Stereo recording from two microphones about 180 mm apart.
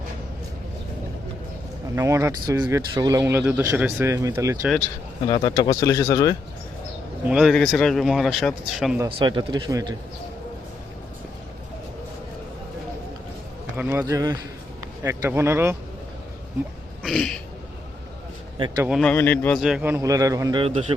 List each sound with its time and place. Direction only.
2.0 s speech: 15° right (ahead or behind)
5.3 s speech: 20° left (ahead or behind)
7.3 s speech: 5° right (ahead or behind)
9.0 s a man's voice: 25° right (ahead or behind)
13.7 s speech: 10° right (ahead or behind)
17.0 s a sound: centre (ahead or behind)
18.8 s speech: 5° right (ahead or behind)
19.0 s speech: 10° left (ahead or behind)
19.5 s a man's voice: 5° right (ahead or behind); by 20.8 s 30° right (ahead or behind)